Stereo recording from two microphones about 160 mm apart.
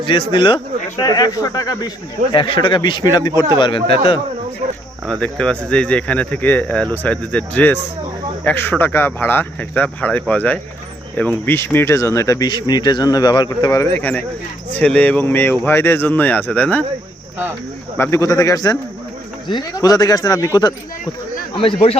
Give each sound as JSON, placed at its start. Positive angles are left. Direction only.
{"t": 0.1, "sound": "speech", "side_deg": 30}
{"t": 5.2, "sound": "speech", "side_deg": 5}
{"t": 17.9, "sound": "speech", "side_deg": 15}
{"t": 21.5, "sound": "speech", "side_deg": 35}